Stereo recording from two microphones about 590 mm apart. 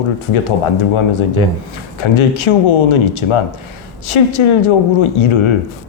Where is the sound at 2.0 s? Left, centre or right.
Left.